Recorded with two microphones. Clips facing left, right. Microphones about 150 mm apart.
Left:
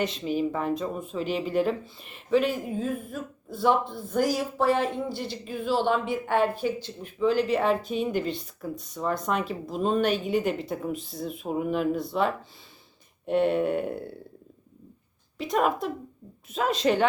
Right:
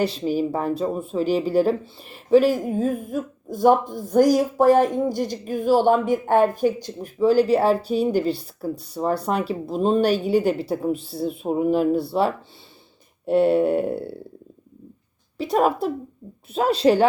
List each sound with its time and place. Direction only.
0.0 s speech: 35° right (ahead or behind)
13.5 s speech: 35° right (ahead or behind)
15.4 s speech: 35° right (ahead or behind)